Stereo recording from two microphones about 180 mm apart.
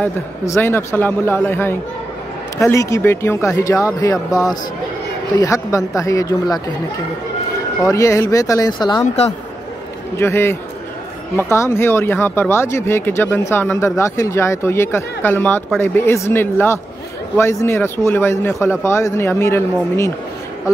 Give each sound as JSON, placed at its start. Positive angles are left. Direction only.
{"t": 0.0, "sound": "speech", "side_deg": 10}
{"t": 7.8, "sound": "speech", "side_deg": 15}
{"t": 9.0, "sound": "speech", "side_deg": 35}
{"t": 10.1, "sound": "speech", "side_deg": 15}